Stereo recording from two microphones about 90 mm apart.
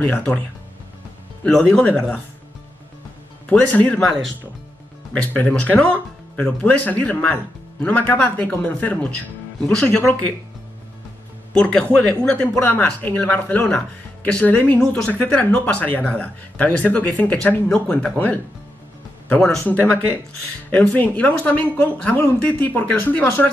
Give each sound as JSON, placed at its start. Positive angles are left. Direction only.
{"t": 0.0, "sound": "speech", "side_deg": 20}
{"t": 1.4, "sound": "speech", "side_deg": 10}
{"t": 3.4, "sound": "speech", "side_deg": 15}
{"t": 5.2, "sound": "speech", "side_deg": 15}
{"t": 11.5, "sound": "speech", "side_deg": 10}
{"t": 14.8, "sound": "speech", "side_deg": 5}
{"t": 15.0, "sound": "speech", "side_deg": 15}